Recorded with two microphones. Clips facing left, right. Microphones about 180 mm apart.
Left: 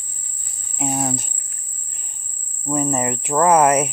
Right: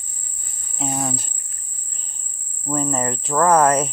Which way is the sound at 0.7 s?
15° left (ahead or behind).